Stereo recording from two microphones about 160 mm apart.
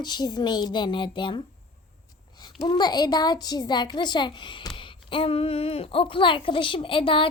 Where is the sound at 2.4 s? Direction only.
25° left (ahead or behind).